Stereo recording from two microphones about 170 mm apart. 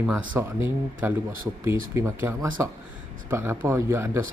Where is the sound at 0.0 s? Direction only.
10° right (ahead or behind).